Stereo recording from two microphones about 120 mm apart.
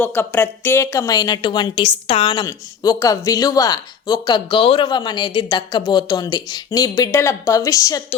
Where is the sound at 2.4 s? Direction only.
30° left (ahead or behind).